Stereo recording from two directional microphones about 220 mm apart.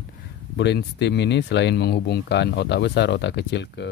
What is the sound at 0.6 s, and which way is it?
Speech, 50° left (ahead or behind).